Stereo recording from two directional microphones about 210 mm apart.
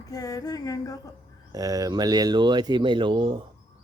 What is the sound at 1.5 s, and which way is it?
Speech, 15° right (ahead or behind).